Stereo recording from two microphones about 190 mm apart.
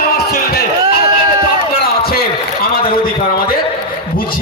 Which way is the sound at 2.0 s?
50° left (ahead or behind).